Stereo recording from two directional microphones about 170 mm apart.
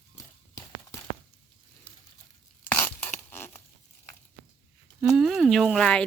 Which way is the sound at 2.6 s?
10° left (ahead or behind).